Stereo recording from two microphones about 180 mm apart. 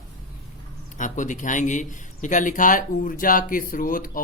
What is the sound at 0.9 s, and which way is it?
Speech, 45° left (ahead or behind).